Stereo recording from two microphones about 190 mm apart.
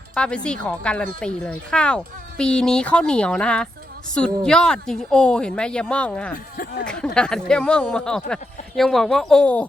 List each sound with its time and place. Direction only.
0.1 s speech: 5° left (ahead or behind)
6.3 s speech: 50° left (ahead or behind)
6.8 s speech: 5° left (ahead or behind)